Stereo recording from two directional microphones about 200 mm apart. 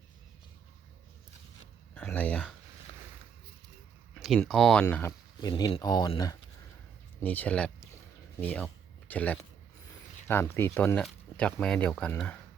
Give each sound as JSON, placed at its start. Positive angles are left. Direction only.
{"t": 2.0, "sound": "speech", "side_deg": 5}
{"t": 4.1, "sound": "speech", "side_deg": 0}
{"t": 5.4, "sound": "speech", "side_deg": 20}
{"t": 7.2, "sound": "speech", "side_deg": 10}